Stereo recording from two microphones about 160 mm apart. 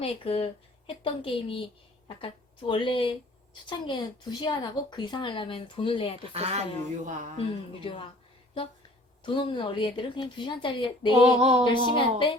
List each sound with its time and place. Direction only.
0.0 s a woman's voice: 35° left (ahead or behind)
6.3 s speech: 40° right (ahead or behind)
7.3 s a woman's voice: 35° left (ahead or behind)
9.2 s a woman's voice: 30° left (ahead or behind)
11.3 s speech: 40° right (ahead or behind)
11.6 s a woman's voice: 30° left (ahead or behind)